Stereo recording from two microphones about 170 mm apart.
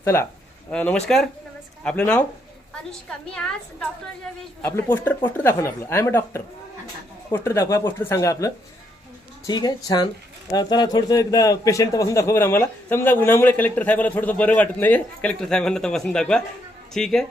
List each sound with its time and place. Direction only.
0.0 s a man's voice: 15° left (ahead or behind)
3.3 s a man's voice: 5° left (ahead or behind)